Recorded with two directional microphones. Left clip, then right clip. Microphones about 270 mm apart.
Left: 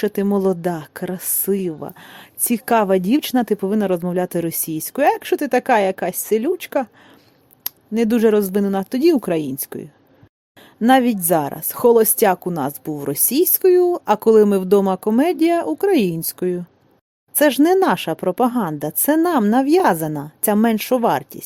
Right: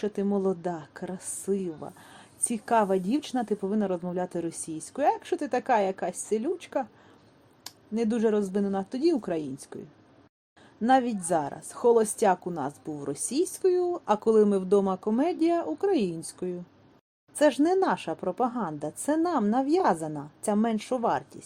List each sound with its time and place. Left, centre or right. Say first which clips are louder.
0.0 s speech: left 9 dB; left